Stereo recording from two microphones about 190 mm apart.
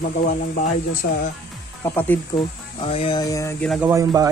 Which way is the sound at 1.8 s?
10° left (ahead or behind).